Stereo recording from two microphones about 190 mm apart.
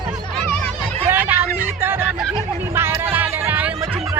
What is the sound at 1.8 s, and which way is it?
Music, 10° right (ahead or behind).